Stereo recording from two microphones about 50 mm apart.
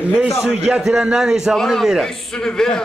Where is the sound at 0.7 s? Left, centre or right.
Centre.